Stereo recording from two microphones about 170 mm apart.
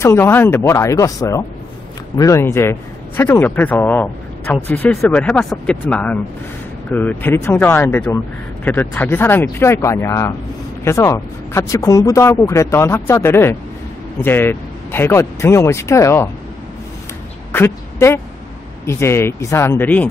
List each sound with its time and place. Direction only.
0.0 s a man's voice: 15° left (ahead or behind)
17.5 s speech: 15° left (ahead or behind)